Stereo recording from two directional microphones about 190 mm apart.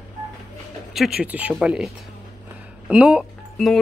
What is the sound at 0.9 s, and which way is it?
A woman's voice, 5° right (ahead or behind).